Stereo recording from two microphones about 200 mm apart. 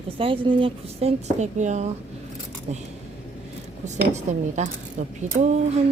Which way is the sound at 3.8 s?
35° right (ahead or behind).